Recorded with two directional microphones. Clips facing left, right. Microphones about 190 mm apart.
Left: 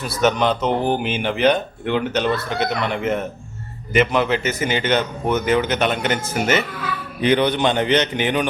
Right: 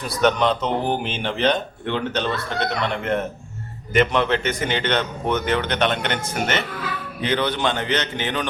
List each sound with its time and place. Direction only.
0.1 s speech: 5° left (ahead or behind)
7.2 s a man's voice: 15° left (ahead or behind)